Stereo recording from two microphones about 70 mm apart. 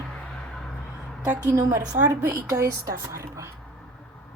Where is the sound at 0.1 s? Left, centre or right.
Centre.